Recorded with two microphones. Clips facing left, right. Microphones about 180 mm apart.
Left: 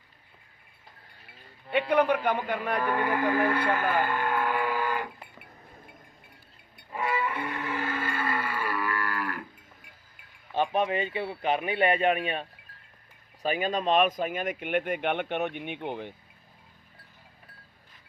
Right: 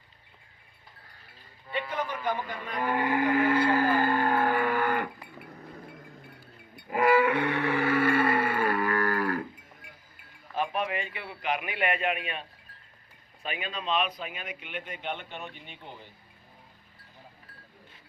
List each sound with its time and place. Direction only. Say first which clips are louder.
1.9 s a man's voice: left 9 dB; 65° left (ahead or behind)
3.6 s music: right 2 dB; 35° right (ahead or behind); by 5.0 s 60° right (ahead or behind)
6.9 s music: right 8 dB; 80° right; by 9.4 s 40° right (ahead or behind)
10.5 s speech: left 4 dB; 30° left (ahead or behind); by 16.1 s 65° left (ahead or behind)